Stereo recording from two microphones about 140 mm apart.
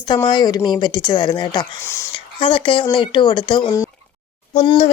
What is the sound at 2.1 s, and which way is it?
Speech, 40° left (ahead or behind).